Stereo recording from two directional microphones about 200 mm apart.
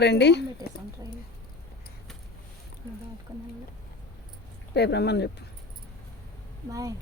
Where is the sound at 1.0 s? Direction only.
20° right (ahead or behind).